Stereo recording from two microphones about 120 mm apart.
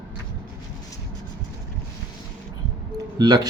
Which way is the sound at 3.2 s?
35° right (ahead or behind).